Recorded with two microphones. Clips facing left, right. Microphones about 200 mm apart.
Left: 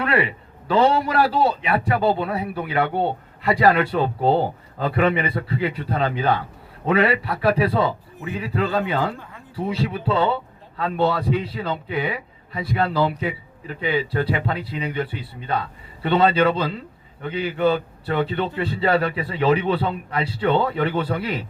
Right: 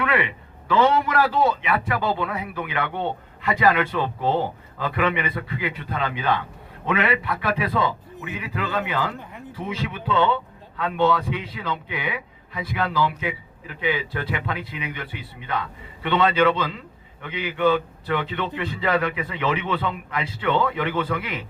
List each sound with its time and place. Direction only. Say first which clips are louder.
0.0 s a man's voice: left 2 dB; 35° left (ahead or behind)